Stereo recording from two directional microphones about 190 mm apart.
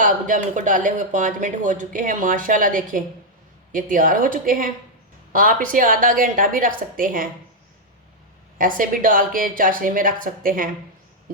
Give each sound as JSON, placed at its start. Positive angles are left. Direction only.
{"t": 0.0, "sound": "speech", "side_deg": -40}
{"t": 8.5, "sound": "speech", "side_deg": -45}